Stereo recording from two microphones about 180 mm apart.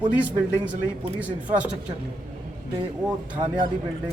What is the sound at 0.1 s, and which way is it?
Speech, 10° right (ahead or behind).